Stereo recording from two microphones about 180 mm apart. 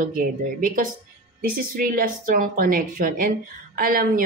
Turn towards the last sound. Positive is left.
turn(degrees=-55)  # may be behind; listen again after turning